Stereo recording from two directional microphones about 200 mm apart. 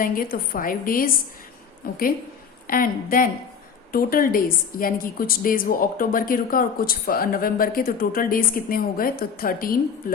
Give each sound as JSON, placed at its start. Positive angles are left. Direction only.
{"t": 0.0, "sound": "a woman's voice", "side_deg": 45}